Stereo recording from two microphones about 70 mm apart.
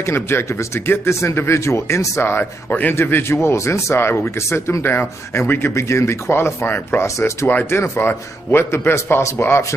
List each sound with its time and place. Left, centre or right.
0.0 s speech: left